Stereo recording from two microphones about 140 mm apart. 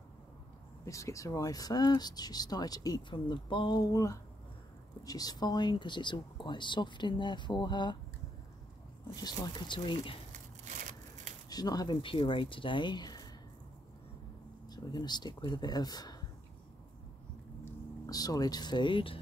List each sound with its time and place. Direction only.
0.8 s speech: 20° left (ahead or behind)
9.2 s speech: 30° left (ahead or behind)
11.4 s speech: 30° left (ahead or behind)
14.7 s speech: 30° left (ahead or behind)
18.0 s speech: 25° left (ahead or behind)